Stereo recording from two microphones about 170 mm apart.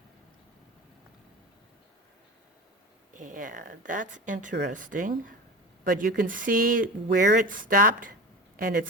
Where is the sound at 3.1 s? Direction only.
50° right (ahead or behind).